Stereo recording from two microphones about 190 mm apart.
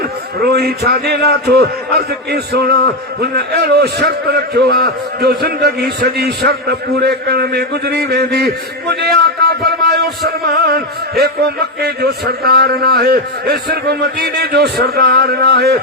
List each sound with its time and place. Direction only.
0.4 s a man's voice: 60° right (ahead or behind)
8.9 s music: 60° right (ahead or behind)
11.2 s a man's voice: 55° right (ahead or behind)